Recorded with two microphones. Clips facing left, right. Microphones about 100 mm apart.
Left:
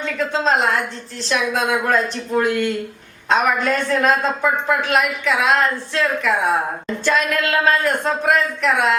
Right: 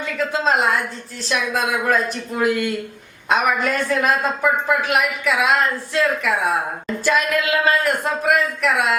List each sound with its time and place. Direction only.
0.0 s a woman's voice: 5° right (ahead or behind)